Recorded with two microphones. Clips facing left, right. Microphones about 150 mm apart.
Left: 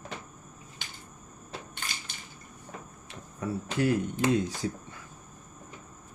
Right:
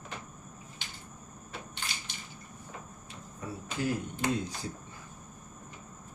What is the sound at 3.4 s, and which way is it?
Cricket, 70° left (ahead or behind).